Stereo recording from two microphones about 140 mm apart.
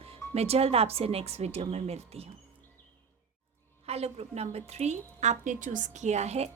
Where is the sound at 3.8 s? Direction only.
45° right (ahead or behind).